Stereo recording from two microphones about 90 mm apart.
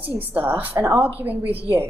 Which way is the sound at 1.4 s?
90° right.